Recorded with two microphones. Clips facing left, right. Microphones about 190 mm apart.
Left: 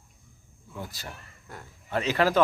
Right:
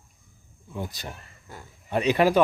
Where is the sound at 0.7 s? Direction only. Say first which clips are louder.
Right 5 dB; 20° right (ahead or behind).